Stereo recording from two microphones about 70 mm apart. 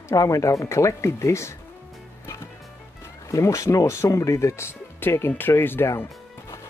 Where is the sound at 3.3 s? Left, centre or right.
Left.